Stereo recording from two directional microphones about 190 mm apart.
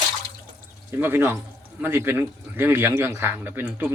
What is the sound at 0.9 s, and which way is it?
Speech, 10° right (ahead or behind).